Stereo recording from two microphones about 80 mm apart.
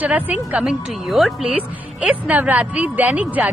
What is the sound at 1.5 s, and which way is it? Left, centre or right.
A woman's voice, centre.